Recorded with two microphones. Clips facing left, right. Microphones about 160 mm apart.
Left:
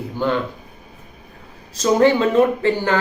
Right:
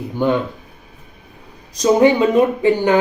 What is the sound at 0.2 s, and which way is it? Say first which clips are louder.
Speech: right 4 dB; 15° right (ahead or behind).